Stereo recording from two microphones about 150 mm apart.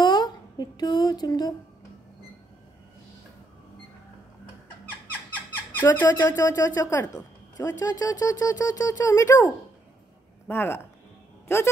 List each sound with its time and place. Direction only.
0.0 s speech: 30° left (ahead or behind)
5.8 s speech: 20° left (ahead or behind)
7.2 s music: 15° left (ahead or behind)
7.8 s speech: 25° left (ahead or behind)
10.5 s speech: 15° left (ahead or behind)